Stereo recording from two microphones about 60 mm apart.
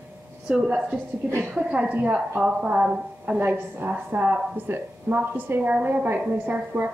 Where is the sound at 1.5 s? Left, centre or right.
Centre.